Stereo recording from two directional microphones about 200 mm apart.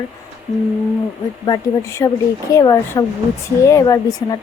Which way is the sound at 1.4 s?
15° left (ahead or behind).